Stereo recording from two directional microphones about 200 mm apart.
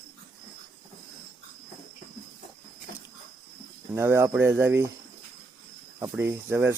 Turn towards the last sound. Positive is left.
turn(degrees=-10)  # may be behind; listen again after turning